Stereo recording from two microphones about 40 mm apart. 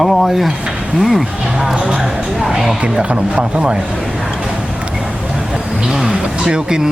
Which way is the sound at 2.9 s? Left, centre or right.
Right.